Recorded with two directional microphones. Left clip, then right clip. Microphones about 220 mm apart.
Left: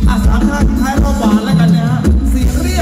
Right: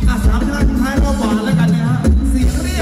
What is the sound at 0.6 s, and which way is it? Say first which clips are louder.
Music: left 2 dB; 10° right (ahead or behind).